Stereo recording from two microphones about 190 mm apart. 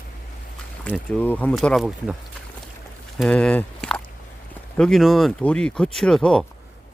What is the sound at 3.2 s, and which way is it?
Speech, 5° left (ahead or behind).